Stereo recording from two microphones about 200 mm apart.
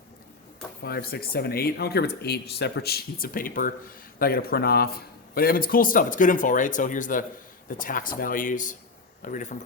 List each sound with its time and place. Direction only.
0.8 s speech: 55° left (ahead or behind)